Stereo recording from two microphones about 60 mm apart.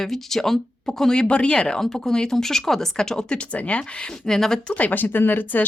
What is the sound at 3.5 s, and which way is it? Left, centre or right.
Speech, left.